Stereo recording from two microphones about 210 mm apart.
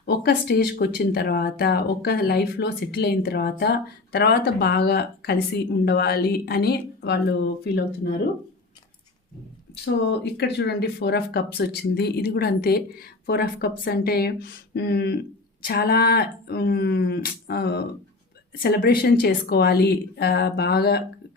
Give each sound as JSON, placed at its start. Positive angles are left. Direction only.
{"t": 0.0, "sound": "speech", "side_deg": 50}
{"t": 9.8, "sound": "speech", "side_deg": 55}